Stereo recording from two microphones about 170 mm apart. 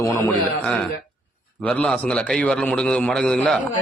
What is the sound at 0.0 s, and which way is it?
Speech, 15° left (ahead or behind).